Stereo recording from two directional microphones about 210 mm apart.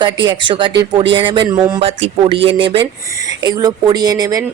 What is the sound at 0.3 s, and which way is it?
Speech, 20° right (ahead or behind).